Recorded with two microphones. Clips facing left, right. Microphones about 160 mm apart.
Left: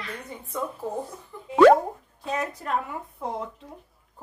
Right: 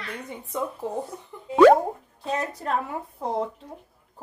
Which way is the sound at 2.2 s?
30° right (ahead or behind).